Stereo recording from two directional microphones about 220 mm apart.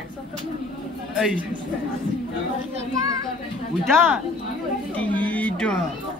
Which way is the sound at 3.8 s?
Centre (ahead or behind).